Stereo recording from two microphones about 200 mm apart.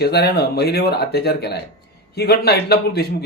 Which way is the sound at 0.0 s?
55° left (ahead or behind).